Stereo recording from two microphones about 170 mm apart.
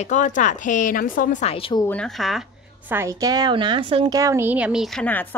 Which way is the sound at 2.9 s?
15° right (ahead or behind).